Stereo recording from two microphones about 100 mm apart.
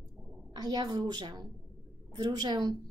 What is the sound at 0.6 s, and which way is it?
A woman's voice, 40° right (ahead or behind).